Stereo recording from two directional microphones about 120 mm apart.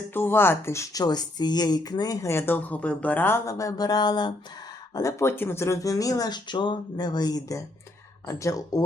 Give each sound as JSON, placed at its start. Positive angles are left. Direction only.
{"t": 0.1, "sound": "speech", "side_deg": 20}
{"t": 1.0, "sound": "speech", "side_deg": 35}
{"t": 4.9, "sound": "speech", "side_deg": 25}